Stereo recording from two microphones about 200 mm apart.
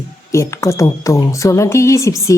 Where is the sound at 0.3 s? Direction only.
15° left (ahead or behind).